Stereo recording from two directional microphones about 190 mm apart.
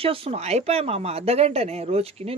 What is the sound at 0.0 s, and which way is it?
Speech, 30° right (ahead or behind).